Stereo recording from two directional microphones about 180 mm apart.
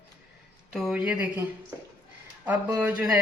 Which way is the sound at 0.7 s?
5° right (ahead or behind).